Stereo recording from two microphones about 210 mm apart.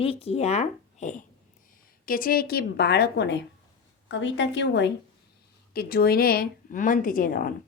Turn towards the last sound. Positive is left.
turn(degrees=45)  # may be behind; listen again after turning